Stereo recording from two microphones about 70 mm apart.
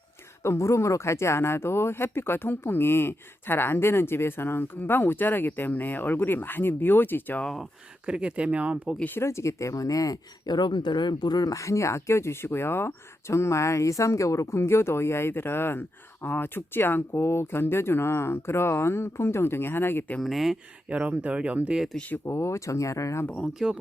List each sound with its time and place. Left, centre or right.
0.4 s speech: left
8.0 s speech: centre
9.0 s speech: left
9.2 s speech: left
11.5 s speech: left
20.2 s speech: centre
20.9 s speech: right
22.3 s speech: left
23.4 s speech: centre